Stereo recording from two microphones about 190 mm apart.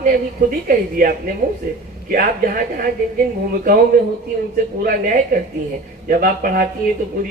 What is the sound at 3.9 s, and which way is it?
A woman's voice, 50° right (ahead or behind).